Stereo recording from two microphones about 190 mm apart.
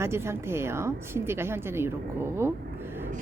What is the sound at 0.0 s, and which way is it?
Speech, 15° right (ahead or behind).